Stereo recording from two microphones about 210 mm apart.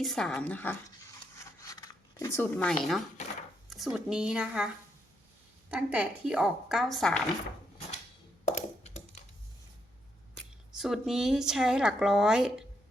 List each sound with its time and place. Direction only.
0.0 s a sound: centre (ahead or behind)
3.2 s chopping: 35° left (ahead or behind)
3.7 s a woman's voice: centre (ahead or behind)
5.7 s a woman's voice: 5° right (ahead or behind)
8.4 s a sound: 35° left (ahead or behind)
10.3 s speech: centre (ahead or behind)